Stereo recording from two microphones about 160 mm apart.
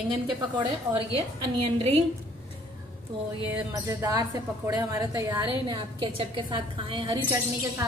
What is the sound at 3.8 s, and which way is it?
A woman's voice, 20° right (ahead or behind).